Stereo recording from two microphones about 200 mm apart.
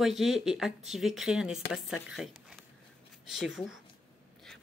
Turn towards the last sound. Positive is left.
turn(degrees=0)  # may be behind; listen again after turning